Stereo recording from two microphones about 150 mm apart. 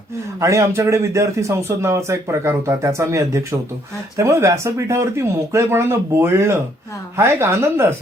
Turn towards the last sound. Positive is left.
turn(degrees=-15)  # may be behind; listen again after turning